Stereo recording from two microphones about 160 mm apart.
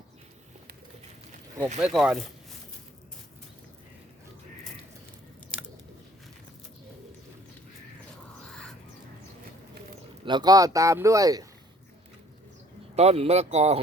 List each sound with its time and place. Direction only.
1.8 s speech: 5° right (ahead or behind)
10.2 s speech: 25° right (ahead or behind)
13.0 s speech: 40° right (ahead or behind)